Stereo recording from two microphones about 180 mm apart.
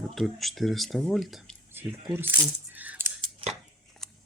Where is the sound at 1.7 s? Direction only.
10° right (ahead or behind).